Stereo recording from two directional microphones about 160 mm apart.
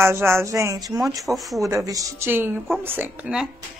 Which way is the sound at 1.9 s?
20° right (ahead or behind).